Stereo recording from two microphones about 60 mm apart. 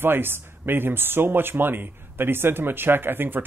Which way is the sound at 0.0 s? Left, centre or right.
Right.